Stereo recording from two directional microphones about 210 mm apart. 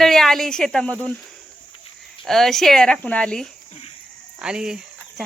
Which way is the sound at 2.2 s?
Centre (ahead or behind).